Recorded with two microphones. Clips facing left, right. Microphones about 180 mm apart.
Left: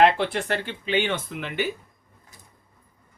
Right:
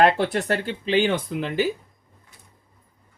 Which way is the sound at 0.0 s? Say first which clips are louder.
Right 1 dB; 40° right (ahead or behind).